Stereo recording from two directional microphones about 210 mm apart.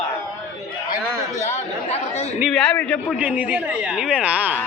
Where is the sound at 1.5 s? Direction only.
30° left (ahead or behind).